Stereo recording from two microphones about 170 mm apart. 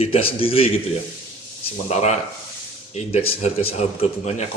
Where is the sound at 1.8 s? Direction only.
40° left (ahead or behind).